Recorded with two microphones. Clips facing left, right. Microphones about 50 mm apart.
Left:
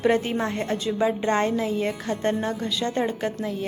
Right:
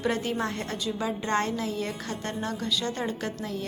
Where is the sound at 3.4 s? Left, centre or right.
Centre.